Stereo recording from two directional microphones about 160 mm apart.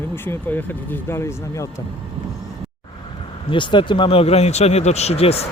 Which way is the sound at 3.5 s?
30° left (ahead or behind).